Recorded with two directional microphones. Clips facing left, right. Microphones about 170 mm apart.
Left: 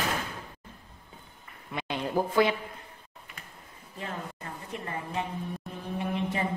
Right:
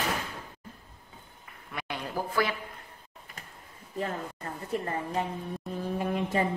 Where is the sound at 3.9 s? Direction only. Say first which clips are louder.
Right 4 dB; 40° right (ahead or behind).